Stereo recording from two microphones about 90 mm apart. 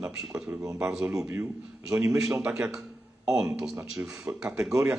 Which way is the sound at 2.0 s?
35° right (ahead or behind).